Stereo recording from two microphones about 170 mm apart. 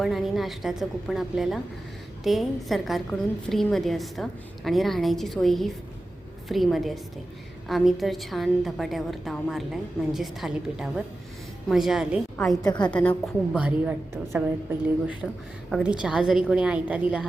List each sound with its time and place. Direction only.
0.0 s a woman's voice: centre (ahead or behind)
12.6 s a woman's voice: 25° left (ahead or behind)
12.9 s a woman's voice: 5° left (ahead or behind)
13.5 s a woman's voice: 5° right (ahead or behind)